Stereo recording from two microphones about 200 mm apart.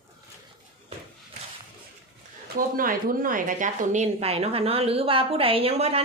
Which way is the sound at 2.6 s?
45° right (ahead or behind).